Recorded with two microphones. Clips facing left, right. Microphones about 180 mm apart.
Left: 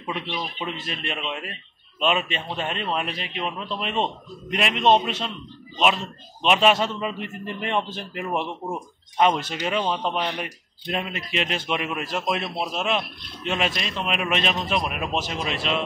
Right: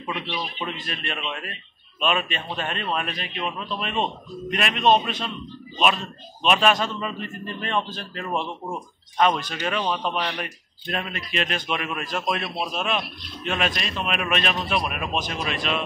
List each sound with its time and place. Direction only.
1.0 s speech: 20° left (ahead or behind)